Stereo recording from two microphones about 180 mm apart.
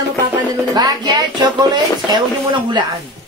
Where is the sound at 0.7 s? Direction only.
20° right (ahead or behind).